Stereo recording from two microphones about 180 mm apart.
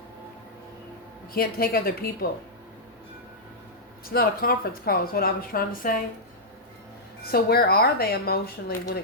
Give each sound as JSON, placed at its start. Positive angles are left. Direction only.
{"t": 1.3, "sound": "a woman's voice", "side_deg": 55}
{"t": 4.1, "sound": "a woman's voice", "side_deg": 55}
{"t": 7.3, "sound": "a woman's voice", "side_deg": 60}